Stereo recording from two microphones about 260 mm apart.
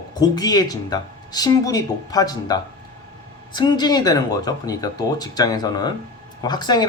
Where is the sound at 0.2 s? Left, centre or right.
Centre.